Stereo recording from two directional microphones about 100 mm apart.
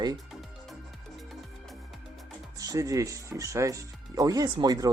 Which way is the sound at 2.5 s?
35° right (ahead or behind).